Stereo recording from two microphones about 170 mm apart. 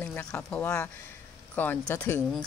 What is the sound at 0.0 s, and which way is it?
Speech, 5° left (ahead or behind).